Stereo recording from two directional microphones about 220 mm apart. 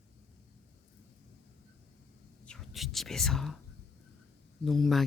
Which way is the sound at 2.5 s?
Centre (ahead or behind).